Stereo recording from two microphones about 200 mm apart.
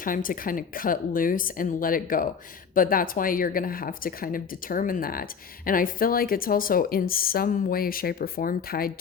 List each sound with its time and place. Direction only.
0.0 s speech: 45° left (ahead or behind)